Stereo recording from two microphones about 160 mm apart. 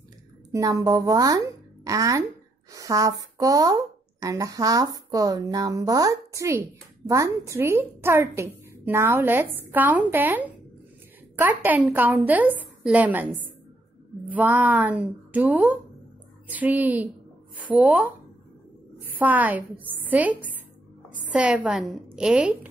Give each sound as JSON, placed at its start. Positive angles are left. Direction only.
{"t": 0.5, "sound": "a woman's voice", "side_deg": -20}